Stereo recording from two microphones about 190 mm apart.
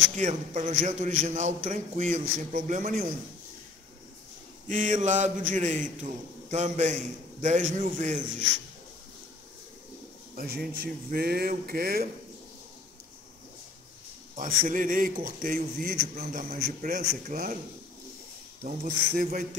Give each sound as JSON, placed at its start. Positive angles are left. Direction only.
{"t": 0.2, "sound": "a man's voice", "side_deg": -40}
{"t": 4.6, "sound": "a man's voice", "side_deg": -40}
{"t": 10.3, "sound": "a man's voice", "side_deg": -55}
{"t": 14.3, "sound": "a man's voice", "side_deg": -45}
{"t": 18.6, "sound": "a man's voice", "side_deg": -45}